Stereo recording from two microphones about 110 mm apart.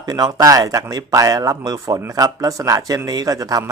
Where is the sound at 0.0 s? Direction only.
35° right (ahead or behind).